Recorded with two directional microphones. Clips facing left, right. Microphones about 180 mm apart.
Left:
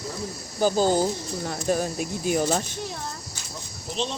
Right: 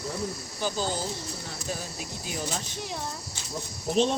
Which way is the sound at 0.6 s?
45° left (ahead or behind).